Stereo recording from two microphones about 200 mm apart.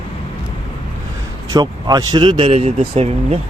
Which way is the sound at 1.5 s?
20° right (ahead or behind).